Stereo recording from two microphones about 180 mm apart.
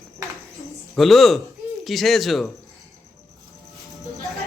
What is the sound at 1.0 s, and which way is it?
Speech, centre (ahead or behind).